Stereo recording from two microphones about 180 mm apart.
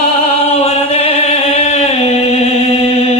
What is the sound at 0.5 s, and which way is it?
Music, 35° left (ahead or behind).